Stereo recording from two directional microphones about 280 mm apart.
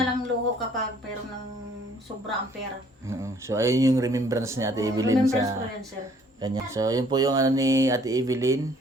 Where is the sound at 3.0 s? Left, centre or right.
Centre.